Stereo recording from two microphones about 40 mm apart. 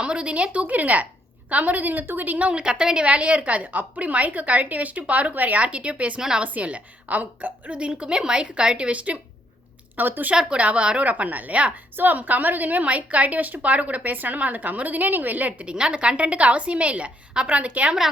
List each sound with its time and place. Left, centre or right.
0.0 s a woman's voice: right
2.5 s a woman's voice: right
6.1 s a woman's voice: centre
6.4 s a woman's voice: right
7.8 s a woman's voice: right
8.9 s a woman's voice: right
9.9 s a woman's voice: right
10.3 s a woman's voice: centre
10.6 s a woman's voice: right
11.9 s a woman's voice: right
12.8 s a woman's voice: right
15.6 s a woman's voice: right